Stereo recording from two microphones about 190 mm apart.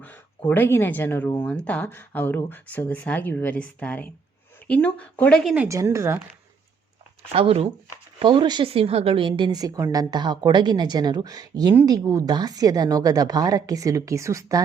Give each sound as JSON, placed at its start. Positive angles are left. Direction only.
{"t": 0.0, "sound": "speech", "side_deg": 10}
{"t": 5.6, "sound": "a woman's voice", "side_deg": -15}
{"t": 7.3, "sound": "a woman's voice", "side_deg": -30}